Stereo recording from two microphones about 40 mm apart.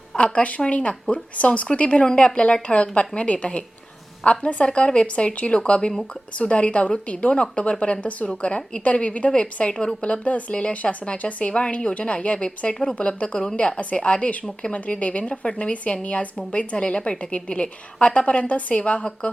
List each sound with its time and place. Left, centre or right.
0.2 s a woman's voice: left